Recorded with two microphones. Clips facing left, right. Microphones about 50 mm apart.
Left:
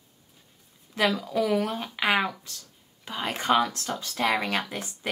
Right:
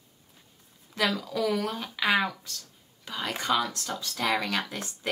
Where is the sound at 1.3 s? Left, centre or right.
Left.